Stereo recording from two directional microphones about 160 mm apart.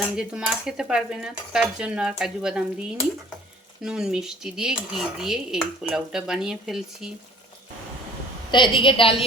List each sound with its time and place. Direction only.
0.2 s speech: 5° right (ahead or behind)
3.8 s speech: 5° right (ahead or behind)
8.4 s a woman's voice: 30° left (ahead or behind)